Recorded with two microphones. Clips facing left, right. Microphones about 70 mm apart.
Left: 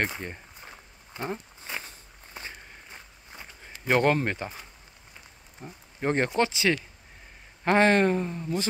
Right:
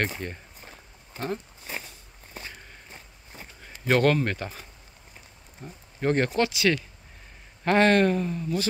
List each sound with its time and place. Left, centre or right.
0.0 s speech: centre
3.6 s speech: centre
5.6 s speech: centre